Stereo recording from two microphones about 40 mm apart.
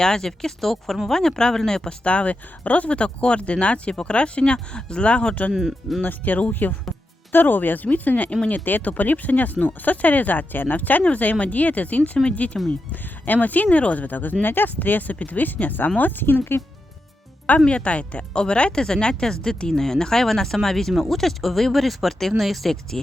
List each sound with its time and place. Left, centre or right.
0.0 s speech: centre
2.0 s speech: left
6.0 s speech: left
13.7 s speech: left
17.7 s speech: left; by 23.0 s centre